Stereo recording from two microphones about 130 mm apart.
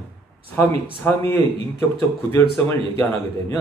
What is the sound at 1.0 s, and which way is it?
Speech, 15° left (ahead or behind).